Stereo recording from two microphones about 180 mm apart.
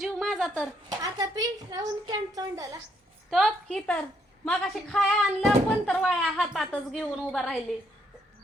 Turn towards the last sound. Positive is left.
turn(degrees=0)  # may be behind; listen again after turning